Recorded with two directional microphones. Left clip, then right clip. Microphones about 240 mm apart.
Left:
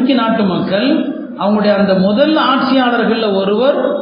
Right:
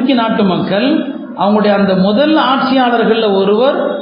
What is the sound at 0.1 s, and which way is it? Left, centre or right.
A man's voice, right.